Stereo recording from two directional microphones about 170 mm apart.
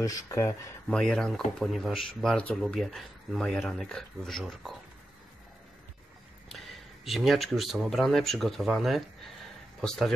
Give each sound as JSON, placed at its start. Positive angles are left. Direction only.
{"t": 0.0, "sound": "speech", "side_deg": 20}
{"t": 0.8, "sound": "speech", "side_deg": 5}
{"t": 7.1, "sound": "speech", "side_deg": 0}